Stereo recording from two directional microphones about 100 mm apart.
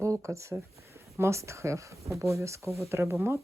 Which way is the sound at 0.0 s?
30° right (ahead or behind).